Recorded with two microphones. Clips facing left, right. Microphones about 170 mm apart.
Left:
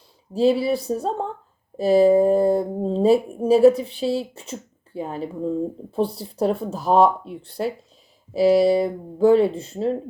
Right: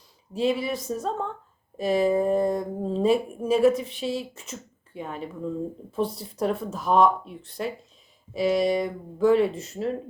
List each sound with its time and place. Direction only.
0.3 s speech: 35° left (ahead or behind)